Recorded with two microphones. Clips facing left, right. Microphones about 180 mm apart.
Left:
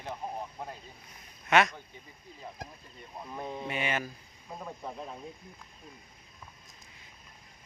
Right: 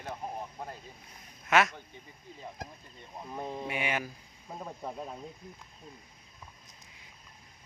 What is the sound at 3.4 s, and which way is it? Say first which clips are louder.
Speech: left 1 dB; 5° right (ahead or behind).